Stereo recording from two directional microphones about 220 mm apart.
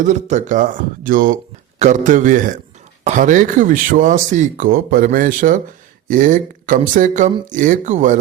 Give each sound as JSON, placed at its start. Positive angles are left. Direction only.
{"t": 0.0, "sound": "speech", "side_deg": -35}